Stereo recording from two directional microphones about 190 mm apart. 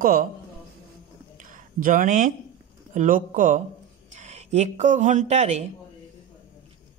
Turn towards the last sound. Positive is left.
turn(degrees=-35)  # may be behind; listen again after turning